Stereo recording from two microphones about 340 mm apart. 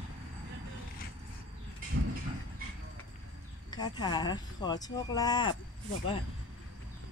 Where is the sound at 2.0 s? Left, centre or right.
Right.